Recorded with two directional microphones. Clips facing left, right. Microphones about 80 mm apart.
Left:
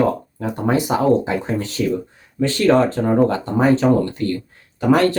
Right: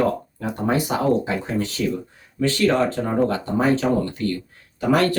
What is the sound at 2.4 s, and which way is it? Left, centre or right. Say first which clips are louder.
Speech: left 4 dB; left.